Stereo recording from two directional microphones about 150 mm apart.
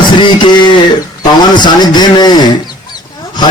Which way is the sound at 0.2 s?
30° left (ahead or behind).